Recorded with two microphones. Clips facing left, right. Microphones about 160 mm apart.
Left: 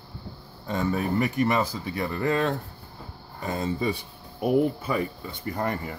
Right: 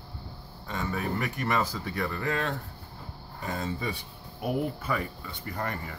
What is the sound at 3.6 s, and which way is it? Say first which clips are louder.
Speech: left 7 dB; 30° left (ahead or behind).